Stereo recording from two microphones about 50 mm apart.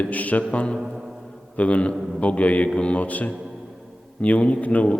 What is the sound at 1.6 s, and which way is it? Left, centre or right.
A man's voice, left.